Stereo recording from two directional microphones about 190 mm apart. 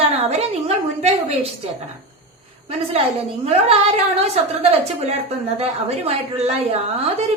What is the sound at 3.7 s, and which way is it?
A woman's voice, 35° right (ahead or behind).